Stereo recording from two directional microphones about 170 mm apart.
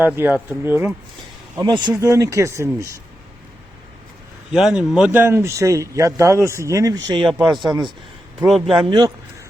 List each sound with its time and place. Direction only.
0.0 s a man's voice: 10° right (ahead or behind)
1.6 s speech: 25° right (ahead or behind)
4.5 s a man's voice: 5° right (ahead or behind); by 7.3 s 20° right (ahead or behind)
7.3 s speech: 5° right (ahead or behind)
8.8 s speech: 25° right (ahead or behind)